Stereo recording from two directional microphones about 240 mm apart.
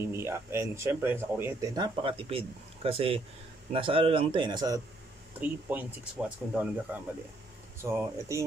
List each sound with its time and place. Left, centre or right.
0.0 s speech: centre